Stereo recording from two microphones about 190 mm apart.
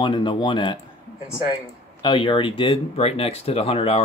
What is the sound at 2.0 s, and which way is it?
Speech, 25° left (ahead or behind).